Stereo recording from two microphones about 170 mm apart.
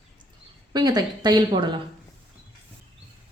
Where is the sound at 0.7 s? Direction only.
25° right (ahead or behind).